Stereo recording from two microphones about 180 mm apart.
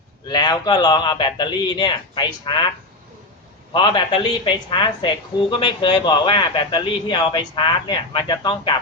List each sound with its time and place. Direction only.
0.3 s a woman's voice: 25° left (ahead or behind)
3.7 s a woman's voice: 25° left (ahead or behind)